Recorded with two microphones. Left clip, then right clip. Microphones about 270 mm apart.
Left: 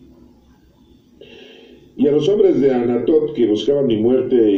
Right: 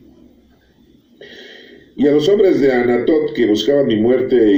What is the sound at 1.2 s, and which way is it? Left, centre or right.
A man's voice, right.